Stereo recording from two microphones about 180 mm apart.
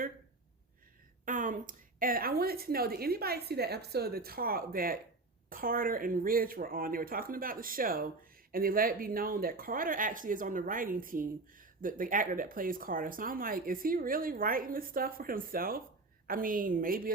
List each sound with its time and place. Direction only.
1.2 s speech: 45° right (ahead or behind)